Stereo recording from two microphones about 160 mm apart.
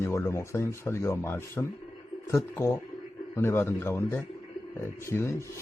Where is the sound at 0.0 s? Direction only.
15° left (ahead or behind).